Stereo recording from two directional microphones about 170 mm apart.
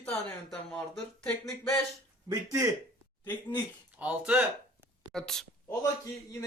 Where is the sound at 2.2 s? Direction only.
15° right (ahead or behind).